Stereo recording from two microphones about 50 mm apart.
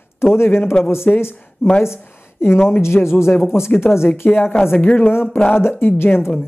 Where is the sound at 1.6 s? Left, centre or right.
Left.